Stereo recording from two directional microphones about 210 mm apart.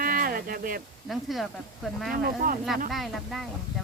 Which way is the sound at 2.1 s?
45° right (ahead or behind).